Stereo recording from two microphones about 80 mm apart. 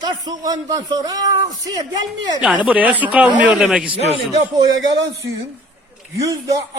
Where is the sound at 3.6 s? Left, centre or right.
Centre.